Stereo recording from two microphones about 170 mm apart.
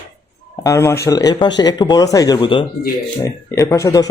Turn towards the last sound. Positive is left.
turn(degrees=20)  # may be behind; listen again after turning